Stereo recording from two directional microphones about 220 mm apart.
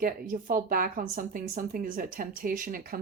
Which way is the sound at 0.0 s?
40° right (ahead or behind).